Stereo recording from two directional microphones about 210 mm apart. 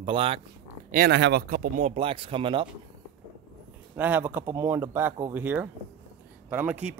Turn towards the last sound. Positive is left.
turn(degrees=-10)  # may be behind; listen again after turning